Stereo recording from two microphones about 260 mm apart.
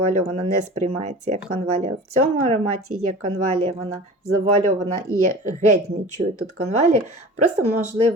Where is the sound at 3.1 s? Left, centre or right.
Right.